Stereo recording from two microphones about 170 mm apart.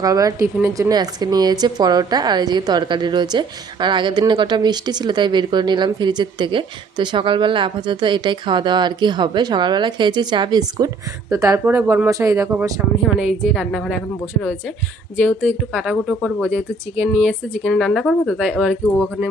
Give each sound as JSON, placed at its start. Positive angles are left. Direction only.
{"t": 0.0, "sound": "a woman's voice", "side_deg": -20}
{"t": 13.5, "sound": "speech", "side_deg": 0}
{"t": 15.8, "sound": "speech", "side_deg": -5}
{"t": 17.2, "sound": "speech", "side_deg": 5}